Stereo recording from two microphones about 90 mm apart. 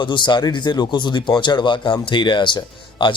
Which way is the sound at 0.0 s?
60° left (ahead or behind).